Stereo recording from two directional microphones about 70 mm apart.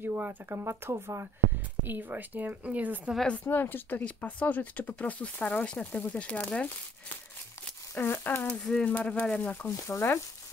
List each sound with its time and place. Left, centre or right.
0.0 s speech: right
3.4 s speech: left
7.9 s speech: left
8.5 s speech: centre
9.8 s speech: left